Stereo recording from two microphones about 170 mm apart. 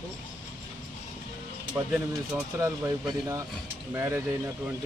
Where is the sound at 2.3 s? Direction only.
20° right (ahead or behind).